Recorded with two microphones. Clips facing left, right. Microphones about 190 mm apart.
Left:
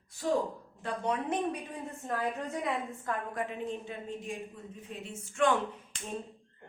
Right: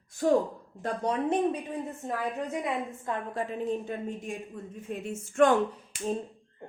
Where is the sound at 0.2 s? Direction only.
55° right (ahead or behind).